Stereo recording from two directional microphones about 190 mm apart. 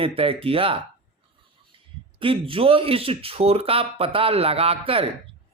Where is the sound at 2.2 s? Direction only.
30° right (ahead or behind).